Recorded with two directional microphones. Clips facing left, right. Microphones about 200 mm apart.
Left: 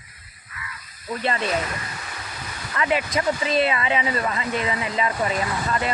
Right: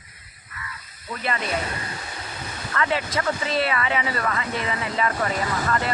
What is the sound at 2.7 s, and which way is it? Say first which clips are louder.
Speech: left 2 dB; 15° left (ahead or behind).